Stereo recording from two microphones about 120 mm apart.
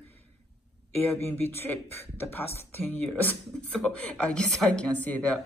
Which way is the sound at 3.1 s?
10° left (ahead or behind).